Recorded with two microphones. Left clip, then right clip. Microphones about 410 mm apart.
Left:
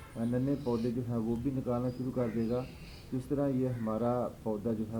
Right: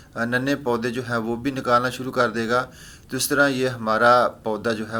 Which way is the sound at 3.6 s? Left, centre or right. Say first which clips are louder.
Right 14 dB; right.